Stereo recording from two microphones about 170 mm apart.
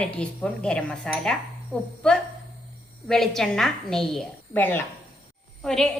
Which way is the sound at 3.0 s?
Centre (ahead or behind).